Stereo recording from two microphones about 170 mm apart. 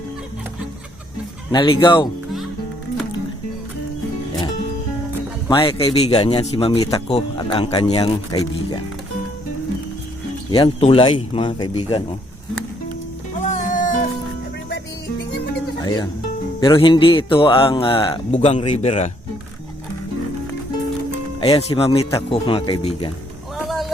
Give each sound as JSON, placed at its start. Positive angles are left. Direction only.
{"t": 1.5, "sound": "speech", "side_deg": 30}
{"t": 5.5, "sound": "speech", "side_deg": 30}
{"t": 10.5, "sound": "speech", "side_deg": 35}
{"t": 13.4, "sound": "music", "side_deg": 50}
{"t": 15.8, "sound": "music", "side_deg": 25}
{"t": 16.6, "sound": "speech", "side_deg": 30}
{"t": 21.4, "sound": "speech", "side_deg": 30}
{"t": 23.6, "sound": "vehicle", "side_deg": 0}